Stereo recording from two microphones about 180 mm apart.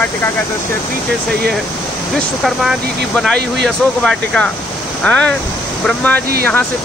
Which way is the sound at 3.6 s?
5° left (ahead or behind).